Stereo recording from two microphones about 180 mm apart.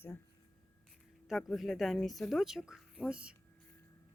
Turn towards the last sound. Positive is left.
turn(degrees=-5)  # may be behind; listen again after turning